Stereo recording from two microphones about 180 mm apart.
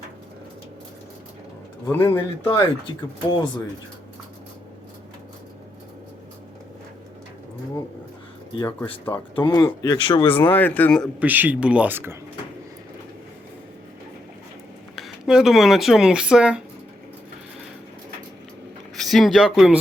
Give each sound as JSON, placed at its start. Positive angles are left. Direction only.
{"t": 2.0, "sound": "speech", "side_deg": 30}
{"t": 9.3, "sound": "speech", "side_deg": 25}
{"t": 10.5, "sound": "speech", "side_deg": 10}
{"t": 11.2, "sound": "speech", "side_deg": -10}
{"t": 14.9, "sound": "speech", "side_deg": 0}
{"t": 18.9, "sound": "speech", "side_deg": 0}